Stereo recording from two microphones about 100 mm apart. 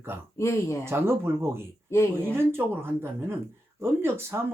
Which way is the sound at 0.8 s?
25° right (ahead or behind).